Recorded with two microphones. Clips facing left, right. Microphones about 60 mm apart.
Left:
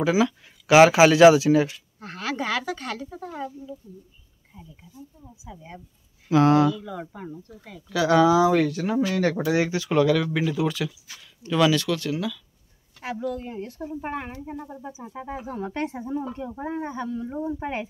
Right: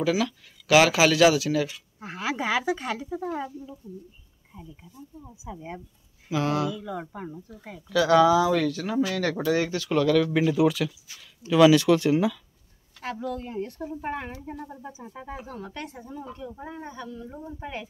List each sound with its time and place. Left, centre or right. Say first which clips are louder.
0.0 s speech: left 3 dB; left
2.0 s a woman's voice: even; centre
5.2 s speech: right 4 dB; right
6.3 s speech: left 8 dB; left
6.7 s a woman's voice: left 2 dB; centre
7.9 s speech: even; centre
10.3 s speech: right 3 dB; centre
11.7 s speech: right 5 dB; centre
13.0 s speech: left 2 dB; centre
15.6 s speech: left 8 dB; left